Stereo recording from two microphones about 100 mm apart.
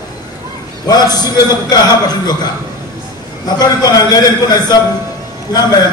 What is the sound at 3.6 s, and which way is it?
Speech, 40° left (ahead or behind).